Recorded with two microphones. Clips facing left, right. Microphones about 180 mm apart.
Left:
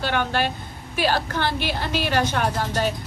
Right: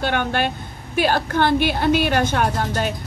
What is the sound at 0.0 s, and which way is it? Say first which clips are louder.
A woman's voice: right 2 dB; 55° right (ahead or behind).